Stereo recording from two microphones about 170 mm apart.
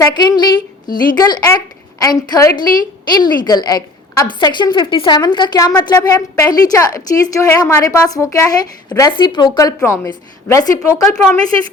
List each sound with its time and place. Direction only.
0.0 s a woman's voice: 25° left (ahead or behind)